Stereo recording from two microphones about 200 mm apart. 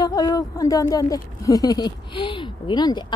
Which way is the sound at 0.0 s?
20° left (ahead or behind).